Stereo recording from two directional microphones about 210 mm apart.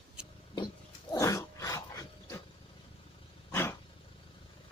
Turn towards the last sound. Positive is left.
turn(degrees=10)  # may be behind; listen again after turning